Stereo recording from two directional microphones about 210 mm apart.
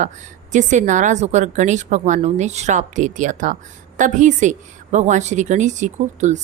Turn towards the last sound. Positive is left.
turn(degrees=-35)  # may be behind; listen again after turning